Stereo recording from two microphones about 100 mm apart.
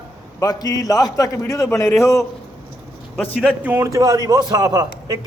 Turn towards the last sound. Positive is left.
turn(degrees=-40)  # may be behind; listen again after turning